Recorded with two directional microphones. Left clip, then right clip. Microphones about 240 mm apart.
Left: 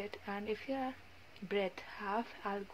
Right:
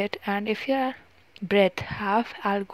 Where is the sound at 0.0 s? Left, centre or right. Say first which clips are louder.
Right 15 dB; right.